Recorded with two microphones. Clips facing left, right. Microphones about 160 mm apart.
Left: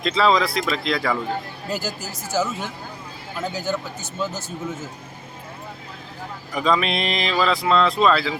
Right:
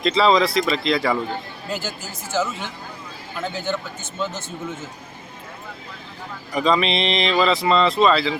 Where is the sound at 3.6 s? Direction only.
40° left (ahead or behind).